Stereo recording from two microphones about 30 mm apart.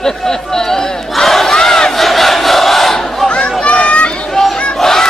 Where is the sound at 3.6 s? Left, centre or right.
Left.